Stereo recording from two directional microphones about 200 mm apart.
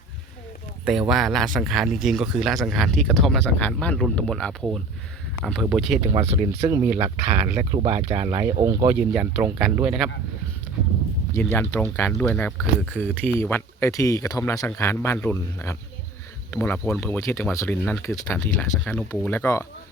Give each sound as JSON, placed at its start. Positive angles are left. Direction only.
{"t": 0.9, "sound": "speech", "side_deg": -5}
{"t": 6.1, "sound": "speech", "side_deg": -30}
{"t": 6.5, "sound": "speech", "side_deg": -15}
{"t": 8.6, "sound": "speech", "side_deg": -15}
{"t": 11.5, "sound": "speech", "side_deg": 10}